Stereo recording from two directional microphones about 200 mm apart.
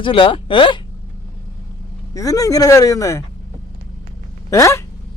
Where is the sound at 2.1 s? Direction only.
15° left (ahead or behind).